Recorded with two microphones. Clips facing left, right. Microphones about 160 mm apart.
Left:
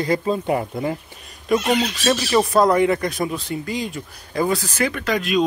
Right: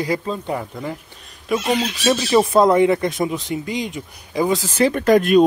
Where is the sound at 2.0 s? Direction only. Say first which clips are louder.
Right 2 dB; 15° right (ahead or behind).